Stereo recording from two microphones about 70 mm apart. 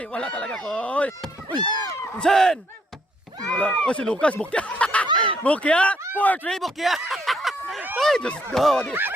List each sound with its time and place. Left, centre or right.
0.0 s speech: centre
1.5 s speech: right
2.1 s speech: centre
3.6 s speech: centre
6.5 s a sound: centre
7.9 s speech: centre
8.9 s speech: right